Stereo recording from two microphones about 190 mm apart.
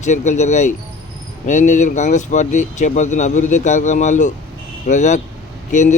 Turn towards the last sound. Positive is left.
turn(degrees=40)  # may be behind; listen again after turning